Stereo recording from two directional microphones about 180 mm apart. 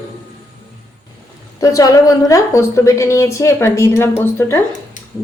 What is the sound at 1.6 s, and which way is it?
Speech, 20° left (ahead or behind).